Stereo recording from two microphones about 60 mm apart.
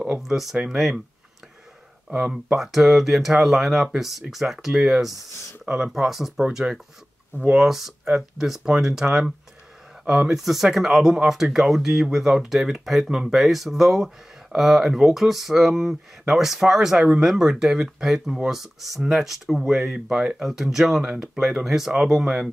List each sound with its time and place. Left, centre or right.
0.2 s speech: centre
2.0 s speech: centre
2.6 s speech: centre
10.0 s speech: centre